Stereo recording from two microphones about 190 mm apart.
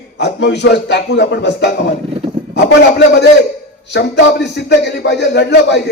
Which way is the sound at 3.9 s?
65° left (ahead or behind).